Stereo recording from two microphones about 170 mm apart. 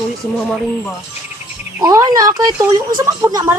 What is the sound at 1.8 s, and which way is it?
Speech, 20° right (ahead or behind).